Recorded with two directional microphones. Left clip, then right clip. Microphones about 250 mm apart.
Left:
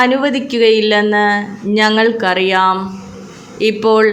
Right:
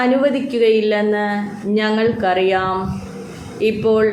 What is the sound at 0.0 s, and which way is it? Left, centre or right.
A woman's voice, left.